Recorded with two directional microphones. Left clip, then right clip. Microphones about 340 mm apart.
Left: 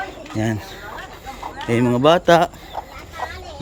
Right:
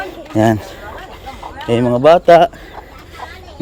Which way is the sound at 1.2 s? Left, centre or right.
Right.